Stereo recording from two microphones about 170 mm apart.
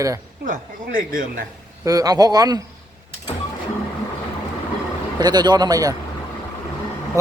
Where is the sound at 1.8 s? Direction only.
20° right (ahead or behind).